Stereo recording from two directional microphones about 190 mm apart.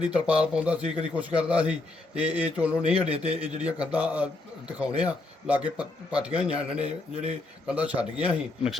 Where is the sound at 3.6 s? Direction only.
5° right (ahead or behind).